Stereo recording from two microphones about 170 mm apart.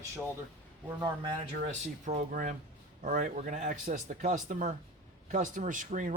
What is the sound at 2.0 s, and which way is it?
Speech, 50° right (ahead or behind).